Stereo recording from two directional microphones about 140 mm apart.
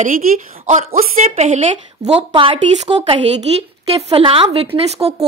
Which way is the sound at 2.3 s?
40° right (ahead or behind).